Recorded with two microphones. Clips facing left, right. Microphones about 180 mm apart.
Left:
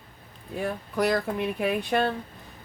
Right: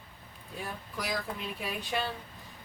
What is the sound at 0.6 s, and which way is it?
Speech, 65° left (ahead or behind).